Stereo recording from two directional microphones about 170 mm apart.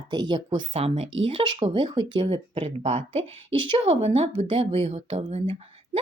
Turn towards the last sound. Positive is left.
turn(degrees=-35)  # may be behind; listen again after turning